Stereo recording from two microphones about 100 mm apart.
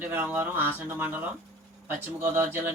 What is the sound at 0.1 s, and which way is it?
Speech, 20° right (ahead or behind).